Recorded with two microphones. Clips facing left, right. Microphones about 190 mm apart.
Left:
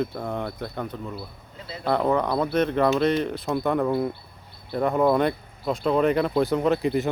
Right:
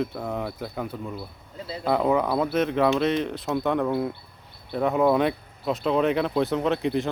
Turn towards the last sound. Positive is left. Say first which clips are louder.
# left 2 dB
turn(degrees=0)  # may be behind; listen again after turning